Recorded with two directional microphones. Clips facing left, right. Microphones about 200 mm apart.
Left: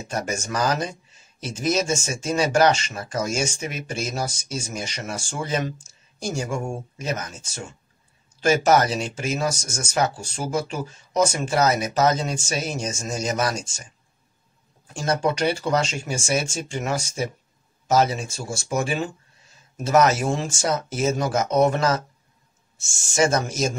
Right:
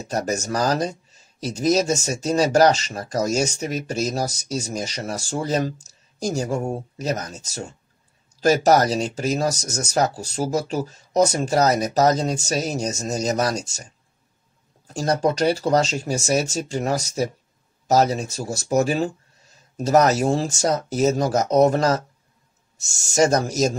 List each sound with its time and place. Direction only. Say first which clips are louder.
0.0 s speech: right 4 dB; 40° right (ahead or behind)
14.9 s speech: right 2 dB; 40° right (ahead or behind)